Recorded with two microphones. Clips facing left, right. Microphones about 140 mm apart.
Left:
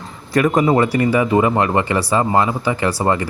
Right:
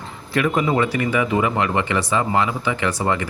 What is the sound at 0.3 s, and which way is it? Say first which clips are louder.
Speech: left 5 dB; 40° left (ahead or behind).